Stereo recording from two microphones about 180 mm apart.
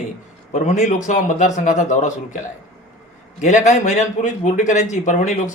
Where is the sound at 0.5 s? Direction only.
40° left (ahead or behind).